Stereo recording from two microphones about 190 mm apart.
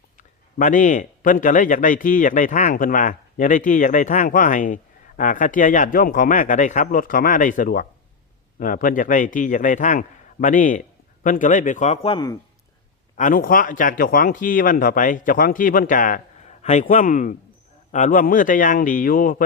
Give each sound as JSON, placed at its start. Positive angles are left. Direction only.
{"t": 0.2, "sound": "a man's voice", "side_deg": 40}
{"t": 13.1, "sound": "a man's voice", "side_deg": 45}